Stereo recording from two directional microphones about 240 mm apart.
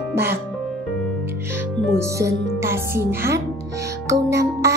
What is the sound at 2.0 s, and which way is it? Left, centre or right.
Speech, centre.